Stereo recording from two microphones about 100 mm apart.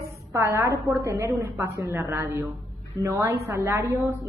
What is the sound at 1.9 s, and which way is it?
A woman's voice, 35° right (ahead or behind).